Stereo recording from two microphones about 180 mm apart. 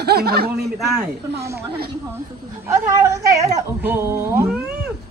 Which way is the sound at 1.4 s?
15° right (ahead or behind).